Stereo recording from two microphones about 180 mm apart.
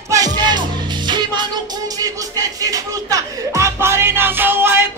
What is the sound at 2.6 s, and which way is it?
Music, 20° right (ahead or behind).